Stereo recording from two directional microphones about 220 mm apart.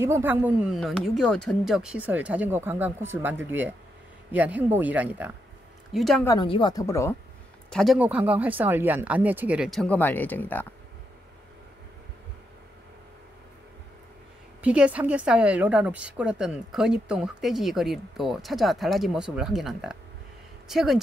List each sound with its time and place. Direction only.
0.0 s a woman's voice: 10° right (ahead or behind)
6.2 s speech: 20° left (ahead or behind)
7.7 s a woman's voice: centre (ahead or behind)
14.6 s a woman's voice: 5° right (ahead or behind)